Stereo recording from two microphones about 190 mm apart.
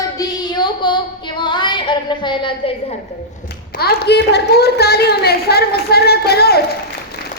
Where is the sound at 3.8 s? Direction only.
55° left (ahead or behind).